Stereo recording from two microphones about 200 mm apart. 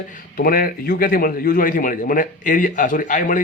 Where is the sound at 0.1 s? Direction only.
45° left (ahead or behind).